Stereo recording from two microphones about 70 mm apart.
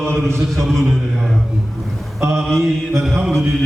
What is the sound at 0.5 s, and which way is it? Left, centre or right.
Mantra, centre.